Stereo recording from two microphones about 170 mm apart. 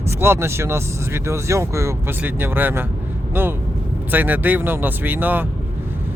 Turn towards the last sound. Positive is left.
turn(degrees=-10)  # may be behind; listen again after turning